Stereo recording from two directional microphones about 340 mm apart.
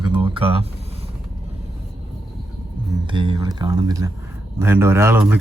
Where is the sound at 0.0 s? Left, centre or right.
Centre.